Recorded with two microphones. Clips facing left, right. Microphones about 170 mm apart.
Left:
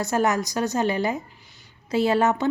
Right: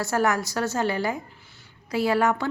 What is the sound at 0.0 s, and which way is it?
A woman's voice, 20° left (ahead or behind).